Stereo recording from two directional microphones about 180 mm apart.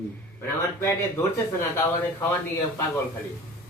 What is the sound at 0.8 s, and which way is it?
Speech, 15° left (ahead or behind).